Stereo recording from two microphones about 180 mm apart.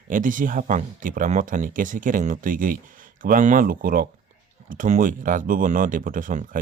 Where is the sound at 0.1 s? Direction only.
45° right (ahead or behind).